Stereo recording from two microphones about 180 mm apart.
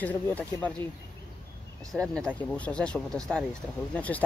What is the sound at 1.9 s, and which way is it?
Speech, centre (ahead or behind).